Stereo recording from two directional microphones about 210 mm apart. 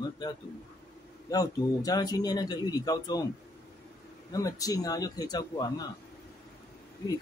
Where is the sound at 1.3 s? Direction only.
15° left (ahead or behind).